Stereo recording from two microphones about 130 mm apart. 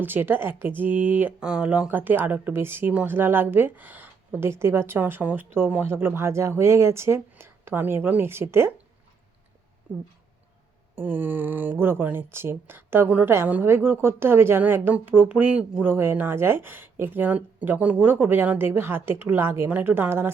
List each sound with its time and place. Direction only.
0.0 s speech: 15° right (ahead or behind)
10.9 s speech: 15° right (ahead or behind)